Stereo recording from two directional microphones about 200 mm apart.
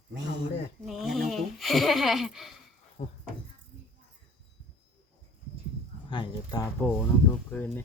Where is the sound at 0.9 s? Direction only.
Centre (ahead or behind).